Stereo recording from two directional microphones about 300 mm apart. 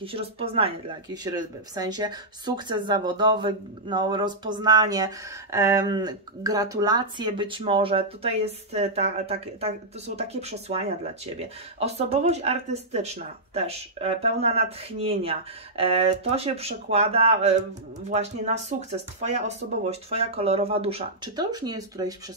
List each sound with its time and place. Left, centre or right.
0.0 s speech: centre